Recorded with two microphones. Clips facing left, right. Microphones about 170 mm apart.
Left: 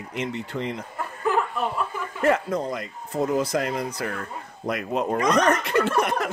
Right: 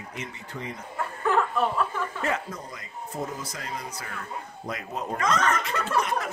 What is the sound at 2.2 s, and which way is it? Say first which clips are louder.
Speech: left 12 dB; 60° left (ahead or behind).